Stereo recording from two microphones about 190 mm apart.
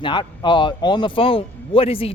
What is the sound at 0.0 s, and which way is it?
Speech, 25° left (ahead or behind).